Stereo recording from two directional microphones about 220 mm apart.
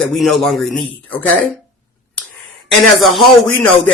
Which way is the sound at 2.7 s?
Centre (ahead or behind).